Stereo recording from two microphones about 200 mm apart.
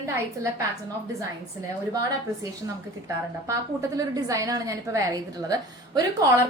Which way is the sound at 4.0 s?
15° right (ahead or behind).